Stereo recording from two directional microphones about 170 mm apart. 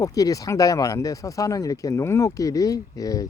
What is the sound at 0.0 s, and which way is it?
Speech, 20° left (ahead or behind).